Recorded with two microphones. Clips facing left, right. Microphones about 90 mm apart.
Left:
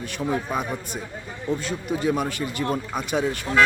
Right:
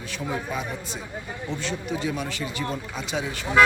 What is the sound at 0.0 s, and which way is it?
Speech, 50° left (ahead or behind).